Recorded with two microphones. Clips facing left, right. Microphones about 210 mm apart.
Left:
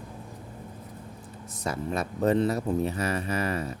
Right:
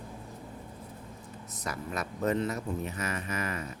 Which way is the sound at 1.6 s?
30° left (ahead or behind).